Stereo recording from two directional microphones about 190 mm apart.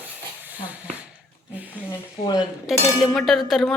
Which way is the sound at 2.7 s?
Centre (ahead or behind).